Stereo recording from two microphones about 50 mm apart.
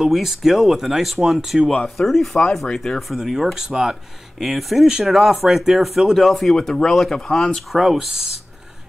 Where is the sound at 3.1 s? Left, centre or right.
Centre.